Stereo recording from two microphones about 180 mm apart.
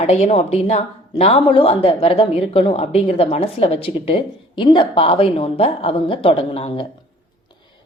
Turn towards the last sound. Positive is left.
turn(degrees=30)  # may be behind; listen again after turning